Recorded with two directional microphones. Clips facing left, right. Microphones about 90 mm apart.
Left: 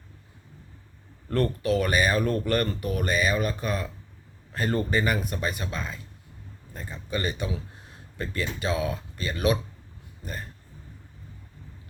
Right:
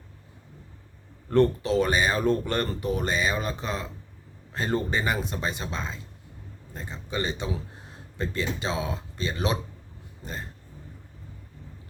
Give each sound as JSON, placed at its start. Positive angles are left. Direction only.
{"t": 1.3, "sound": "speech", "side_deg": -25}